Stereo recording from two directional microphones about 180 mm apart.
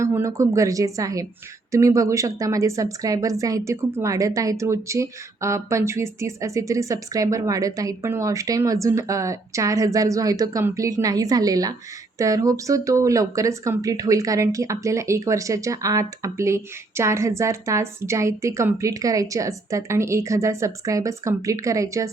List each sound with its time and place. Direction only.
0.0 s a woman's voice: 15° right (ahead or behind)